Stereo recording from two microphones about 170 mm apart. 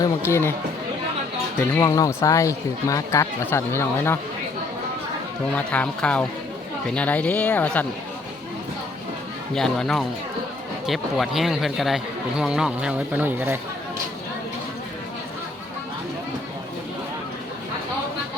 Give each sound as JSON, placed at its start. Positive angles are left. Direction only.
{"t": 0.0, "sound": "speech", "side_deg": 15}
{"t": 1.5, "sound": "speech", "side_deg": 15}
{"t": 5.5, "sound": "speech", "side_deg": 5}
{"t": 9.6, "sound": "speech", "side_deg": 5}